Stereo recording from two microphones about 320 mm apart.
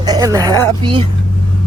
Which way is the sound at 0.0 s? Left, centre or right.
Centre.